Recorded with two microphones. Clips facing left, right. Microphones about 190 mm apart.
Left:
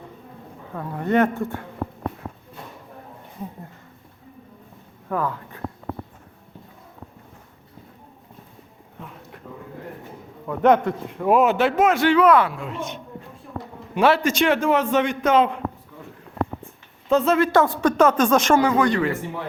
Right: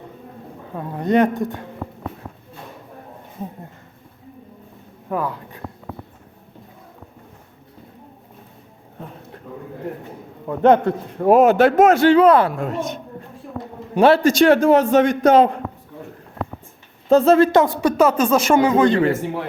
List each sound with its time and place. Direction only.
0.7 s a woman's voice: 20° right (ahead or behind)
5.0 s a sound: 15° right (ahead or behind)
9.0 s a sound: 35° right (ahead or behind)
10.4 s a man's voice: 30° right (ahead or behind)
12.5 s speech: 45° right (ahead or behind)
13.9 s a man's voice: 30° right (ahead or behind)
17.1 s a man's voice: 40° right (ahead or behind)
17.5 s a woman's voice: 15° right (ahead or behind)
18.5 s speech: 20° right (ahead or behind)